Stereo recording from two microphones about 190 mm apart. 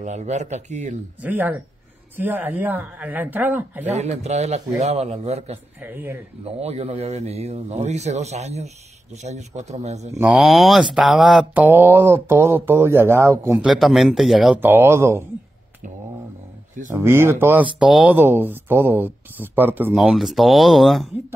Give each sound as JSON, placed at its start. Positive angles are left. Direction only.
{"t": 0.0, "sound": "a man's voice", "side_deg": -35}
{"t": 1.2, "sound": "speech", "side_deg": -10}
{"t": 3.8, "sound": "a man's voice", "side_deg": -35}
{"t": 5.8, "sound": "speech", "side_deg": -10}
{"t": 6.4, "sound": "a man's voice", "side_deg": -35}
{"t": 10.1, "sound": "speech", "side_deg": -10}
{"t": 13.7, "sound": "speech", "side_deg": 0}
{"t": 16.9, "sound": "speech", "side_deg": -10}